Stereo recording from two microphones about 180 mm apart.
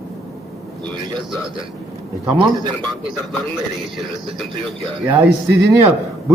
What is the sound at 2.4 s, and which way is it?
Speech, 25° right (ahead or behind).